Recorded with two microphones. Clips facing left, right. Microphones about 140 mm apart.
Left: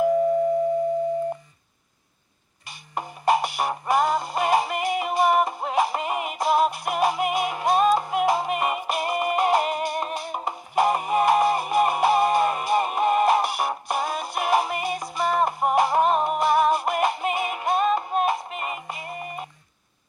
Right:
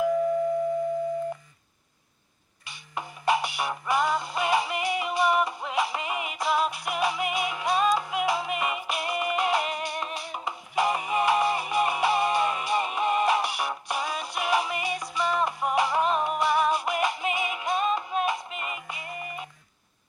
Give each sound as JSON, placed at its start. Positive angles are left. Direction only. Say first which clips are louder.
{"t": 2.6, "sound": "music", "louder": "left 4 dB", "side_deg": 45}